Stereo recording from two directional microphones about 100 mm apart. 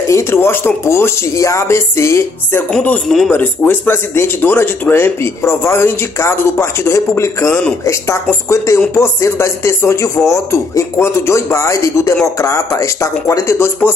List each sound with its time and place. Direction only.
0.1 s chopping: 25° left (ahead or behind)
3.3 s chopping: 15° left (ahead or behind)
12.4 s speech: 30° left (ahead or behind)